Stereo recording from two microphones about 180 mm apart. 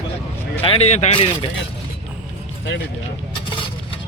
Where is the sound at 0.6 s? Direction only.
35° left (ahead or behind).